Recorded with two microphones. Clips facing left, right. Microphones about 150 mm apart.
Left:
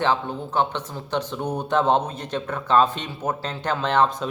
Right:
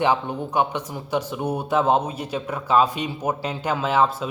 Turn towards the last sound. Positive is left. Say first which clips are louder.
# even
turn(degrees=-5)  # may be behind; listen again after turning